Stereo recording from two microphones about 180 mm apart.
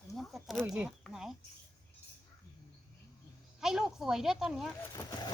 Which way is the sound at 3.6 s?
Centre (ahead or behind).